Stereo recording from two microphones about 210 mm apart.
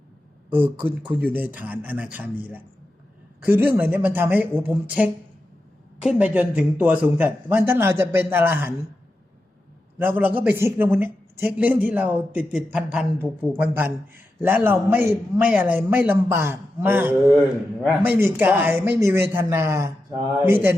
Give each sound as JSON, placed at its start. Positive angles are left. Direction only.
{"t": 0.5, "sound": "speech", "side_deg": -10}
{"t": 10.0, "sound": "speech", "side_deg": -10}